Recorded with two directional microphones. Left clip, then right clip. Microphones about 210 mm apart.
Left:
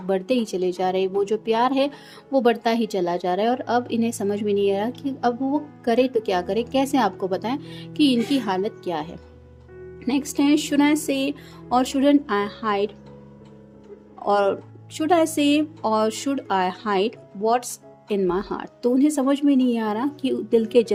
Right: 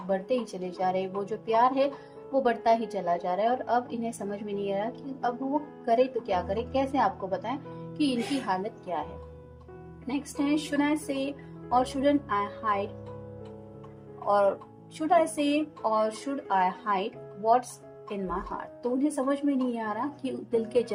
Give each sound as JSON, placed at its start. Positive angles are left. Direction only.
{"t": 0.1, "sound": "a woman's voice", "side_deg": 40}
{"t": 10.1, "sound": "a woman's voice", "side_deg": 45}
{"t": 14.3, "sound": "a woman's voice", "side_deg": 45}